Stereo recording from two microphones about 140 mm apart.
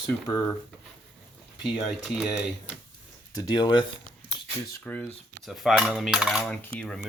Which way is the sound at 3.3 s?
30° left (ahead or behind).